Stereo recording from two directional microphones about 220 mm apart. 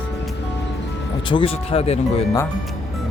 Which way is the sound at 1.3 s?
25° left (ahead or behind).